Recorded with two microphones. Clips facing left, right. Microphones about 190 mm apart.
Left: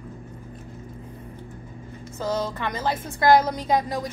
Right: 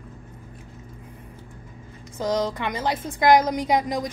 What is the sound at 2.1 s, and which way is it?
Speech, 15° right (ahead or behind).